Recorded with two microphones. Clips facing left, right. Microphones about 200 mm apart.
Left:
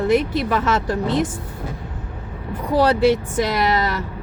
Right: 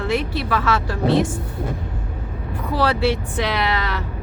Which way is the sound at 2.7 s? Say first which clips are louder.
Left 4 dB; 15° left (ahead or behind).